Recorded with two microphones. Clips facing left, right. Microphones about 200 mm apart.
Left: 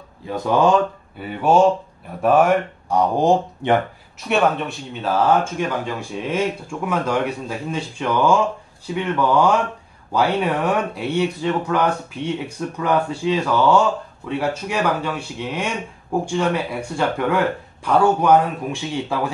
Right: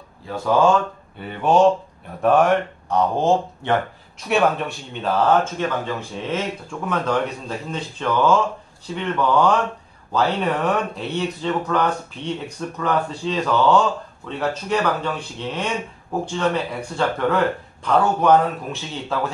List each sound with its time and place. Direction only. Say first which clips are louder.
0.3 s speech: left 1 dB; 15° left (ahead or behind)
4.3 s speech: even; centre (ahead or behind)
5.3 s speech: even; 10° left (ahead or behind)